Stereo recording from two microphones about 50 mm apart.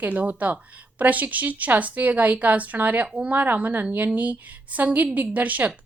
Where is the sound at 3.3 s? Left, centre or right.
Right.